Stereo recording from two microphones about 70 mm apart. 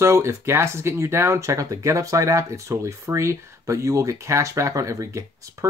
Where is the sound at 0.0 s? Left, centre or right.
Right.